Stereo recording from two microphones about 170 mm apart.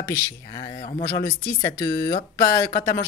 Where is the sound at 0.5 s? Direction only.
35° left (ahead or behind).